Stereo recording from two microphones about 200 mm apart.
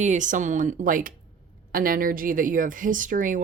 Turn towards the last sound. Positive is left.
turn(degrees=-40)  # may be behind; listen again after turning